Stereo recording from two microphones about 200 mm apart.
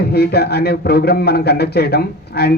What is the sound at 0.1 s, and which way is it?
A man's voice, 50° left (ahead or behind).